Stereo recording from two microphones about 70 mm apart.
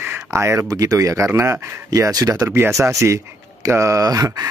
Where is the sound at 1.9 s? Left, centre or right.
Right.